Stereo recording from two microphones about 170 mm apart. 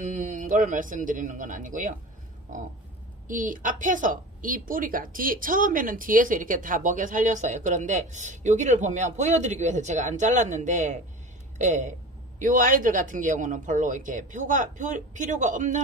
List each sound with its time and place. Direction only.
0.0 s a woman's voice: 50° right (ahead or behind)
3.3 s a woman's voice: 50° right (ahead or behind)